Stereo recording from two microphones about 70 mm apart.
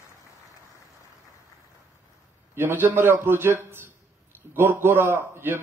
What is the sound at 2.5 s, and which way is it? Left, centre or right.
Speech, right.